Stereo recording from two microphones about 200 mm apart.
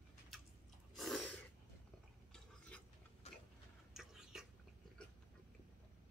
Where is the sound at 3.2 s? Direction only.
35° left (ahead or behind).